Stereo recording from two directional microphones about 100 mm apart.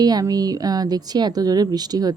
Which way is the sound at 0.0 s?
40° right (ahead or behind).